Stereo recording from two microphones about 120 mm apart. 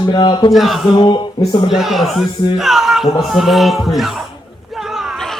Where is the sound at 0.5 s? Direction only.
Centre (ahead or behind).